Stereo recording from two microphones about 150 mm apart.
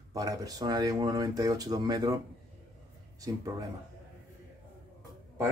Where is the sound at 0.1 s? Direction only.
25° right (ahead or behind).